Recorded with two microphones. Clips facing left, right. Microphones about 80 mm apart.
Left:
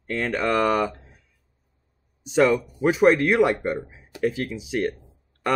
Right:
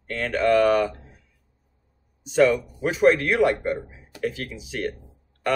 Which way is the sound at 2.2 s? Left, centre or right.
Centre.